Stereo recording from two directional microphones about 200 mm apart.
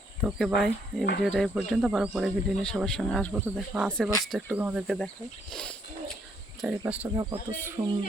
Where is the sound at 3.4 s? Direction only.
10° right (ahead or behind).